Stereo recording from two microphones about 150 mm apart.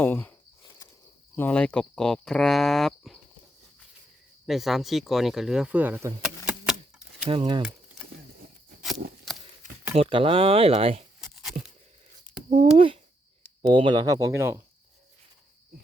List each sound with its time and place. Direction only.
0.0 s speech: 10° left (ahead or behind)
0.6 s cricket: 25° left (ahead or behind)
1.4 s speech: 10° left (ahead or behind)
4.4 s speech: centre (ahead or behind)
6.2 s typewriter: 5° right (ahead or behind)
7.3 s speech: 35° right (ahead or behind)
9.3 s a sound: centre (ahead or behind)
9.9 s speech: 40° right (ahead or behind)
11.2 s tearing: centre (ahead or behind)
12.7 s speech: 35° right (ahead or behind); by 14.6 s 20° right (ahead or behind)